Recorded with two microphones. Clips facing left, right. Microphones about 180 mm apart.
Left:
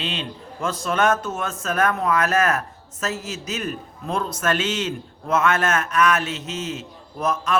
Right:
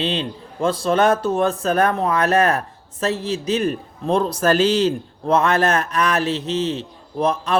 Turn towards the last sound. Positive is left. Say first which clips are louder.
# right 4 dB
turn(degrees=-30)  # may be behind; listen again after turning